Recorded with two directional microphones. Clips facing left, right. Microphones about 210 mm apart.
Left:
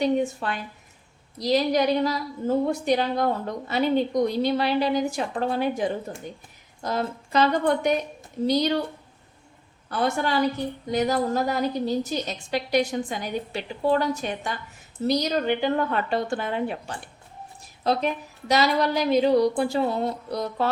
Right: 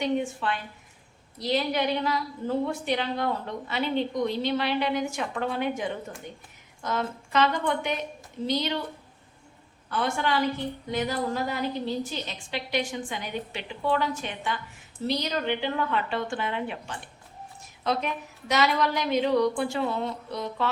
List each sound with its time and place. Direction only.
0.0 s a woman's voice: 40° left (ahead or behind)
9.9 s a woman's voice: 40° left (ahead or behind)